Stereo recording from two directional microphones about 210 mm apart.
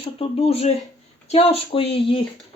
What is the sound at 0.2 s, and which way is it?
Speech, 30° left (ahead or behind).